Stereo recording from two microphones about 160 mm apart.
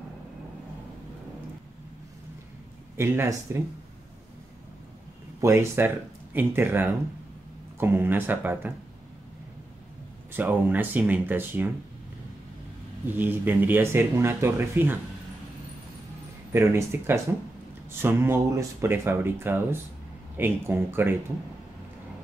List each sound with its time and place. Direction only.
3.0 s speech: 15° right (ahead or behind)
5.4 s speech: 15° right (ahead or behind)
10.3 s speech: 10° right (ahead or behind)
13.0 s speech: 10° right (ahead or behind)
16.5 s speech: 15° right (ahead or behind)